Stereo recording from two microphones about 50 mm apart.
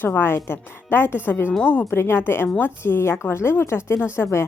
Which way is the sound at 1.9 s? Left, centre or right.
Left.